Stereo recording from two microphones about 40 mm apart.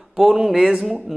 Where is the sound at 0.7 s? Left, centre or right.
Right.